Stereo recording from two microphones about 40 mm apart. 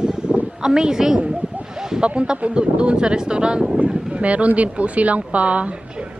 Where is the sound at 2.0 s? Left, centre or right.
Right.